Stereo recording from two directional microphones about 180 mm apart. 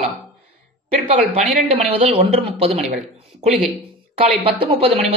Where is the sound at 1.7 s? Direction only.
35° right (ahead or behind).